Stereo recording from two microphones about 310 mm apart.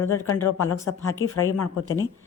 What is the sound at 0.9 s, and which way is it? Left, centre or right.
Speech, left.